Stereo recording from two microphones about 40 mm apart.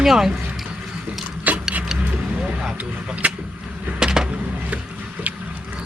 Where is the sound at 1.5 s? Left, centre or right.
Right.